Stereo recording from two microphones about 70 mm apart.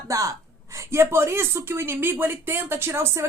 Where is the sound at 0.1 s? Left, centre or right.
Right.